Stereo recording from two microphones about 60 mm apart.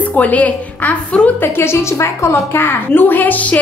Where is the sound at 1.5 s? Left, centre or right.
Left.